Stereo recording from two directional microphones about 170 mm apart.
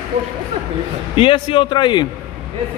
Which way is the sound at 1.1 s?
30° left (ahead or behind).